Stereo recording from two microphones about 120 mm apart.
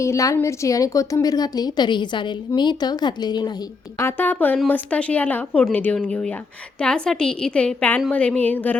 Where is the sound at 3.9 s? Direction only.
20° left (ahead or behind).